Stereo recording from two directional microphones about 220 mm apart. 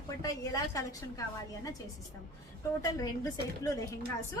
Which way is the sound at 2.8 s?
15° left (ahead or behind).